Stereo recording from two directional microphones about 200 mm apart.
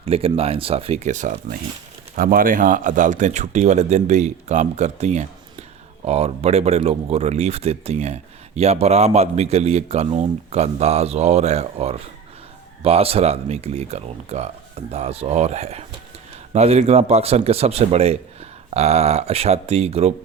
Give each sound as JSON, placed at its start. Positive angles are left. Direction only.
{"t": 0.0, "sound": "speech", "side_deg": -30}